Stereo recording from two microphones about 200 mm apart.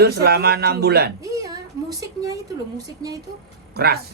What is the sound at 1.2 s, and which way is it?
Speech, 15° right (ahead or behind).